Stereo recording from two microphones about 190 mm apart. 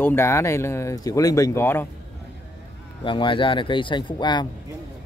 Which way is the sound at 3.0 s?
25° left (ahead or behind).